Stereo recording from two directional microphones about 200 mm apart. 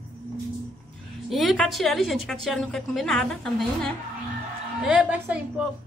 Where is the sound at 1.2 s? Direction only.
Centre (ahead or behind).